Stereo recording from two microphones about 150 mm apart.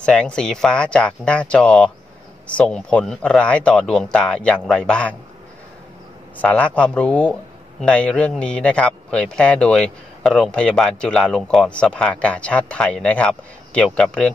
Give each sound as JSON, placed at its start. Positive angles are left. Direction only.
{"t": 0.0, "sound": "speech", "side_deg": 5}
{"t": 6.4, "sound": "speech", "side_deg": 10}